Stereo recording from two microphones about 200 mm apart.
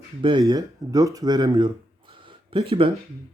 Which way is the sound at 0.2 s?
25° right (ahead or behind).